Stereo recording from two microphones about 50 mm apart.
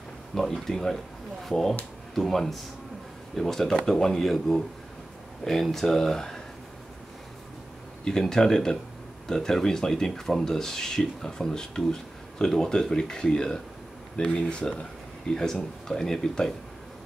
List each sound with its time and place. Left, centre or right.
0.3 s speech: centre
8.0 s speech: centre